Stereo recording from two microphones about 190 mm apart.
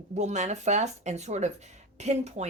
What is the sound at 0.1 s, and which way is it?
Speech, 35° right (ahead or behind).